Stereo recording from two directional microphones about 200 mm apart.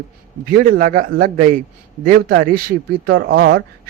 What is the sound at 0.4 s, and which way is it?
Speech, 45° right (ahead or behind).